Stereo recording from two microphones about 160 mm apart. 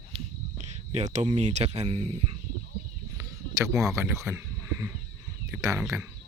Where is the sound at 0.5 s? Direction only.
45° right (ahead or behind).